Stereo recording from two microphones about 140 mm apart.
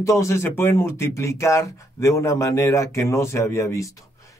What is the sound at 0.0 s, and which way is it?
Speech, 20° left (ahead or behind).